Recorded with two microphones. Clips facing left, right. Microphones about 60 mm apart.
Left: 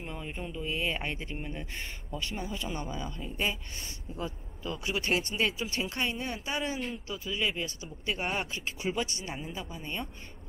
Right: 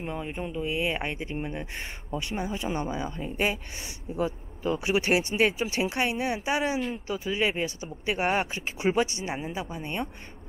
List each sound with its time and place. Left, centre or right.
0.0 s speech: right